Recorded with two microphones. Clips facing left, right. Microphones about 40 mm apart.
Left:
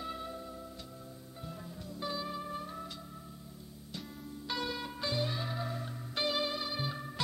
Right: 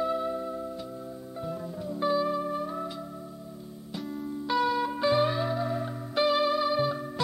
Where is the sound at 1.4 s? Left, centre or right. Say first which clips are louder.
Right 11 dB; centre.